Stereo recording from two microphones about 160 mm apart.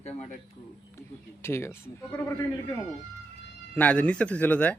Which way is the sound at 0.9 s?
15° left (ahead or behind).